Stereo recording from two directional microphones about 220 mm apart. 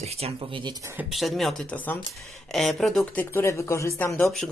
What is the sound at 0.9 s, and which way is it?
Speech, centre (ahead or behind).